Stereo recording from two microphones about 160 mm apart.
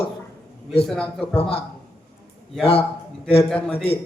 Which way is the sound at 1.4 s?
35° left (ahead or behind).